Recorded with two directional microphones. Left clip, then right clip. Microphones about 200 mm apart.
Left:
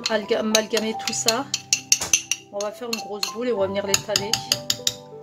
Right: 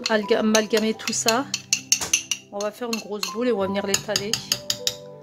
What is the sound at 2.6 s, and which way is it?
Dishes, 55° right (ahead or behind).